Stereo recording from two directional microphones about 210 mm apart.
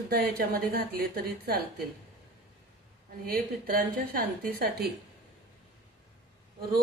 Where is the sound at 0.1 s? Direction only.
45° right (ahead or behind).